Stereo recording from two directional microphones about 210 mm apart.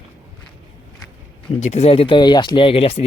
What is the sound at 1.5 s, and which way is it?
Speech, 30° left (ahead or behind).